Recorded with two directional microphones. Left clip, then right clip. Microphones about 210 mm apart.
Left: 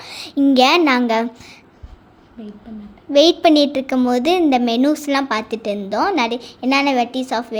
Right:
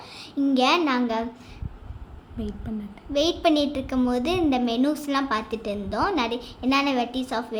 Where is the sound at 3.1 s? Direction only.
35° left (ahead or behind).